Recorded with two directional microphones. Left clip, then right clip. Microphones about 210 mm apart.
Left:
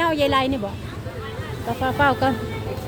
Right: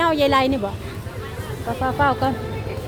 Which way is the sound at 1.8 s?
Centre (ahead or behind).